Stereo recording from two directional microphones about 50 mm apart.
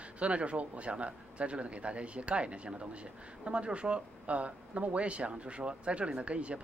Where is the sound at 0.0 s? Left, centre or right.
Right.